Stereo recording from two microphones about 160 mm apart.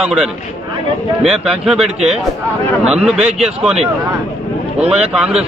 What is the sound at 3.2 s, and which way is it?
Speech, 40° right (ahead or behind).